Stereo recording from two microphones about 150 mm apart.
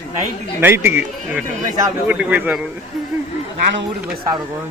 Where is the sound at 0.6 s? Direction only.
15° right (ahead or behind).